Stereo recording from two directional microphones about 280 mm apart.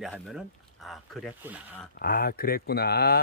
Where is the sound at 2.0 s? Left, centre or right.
Left.